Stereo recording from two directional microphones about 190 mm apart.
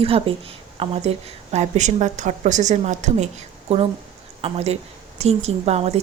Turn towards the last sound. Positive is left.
turn(degrees=-35)  # may be behind; listen again after turning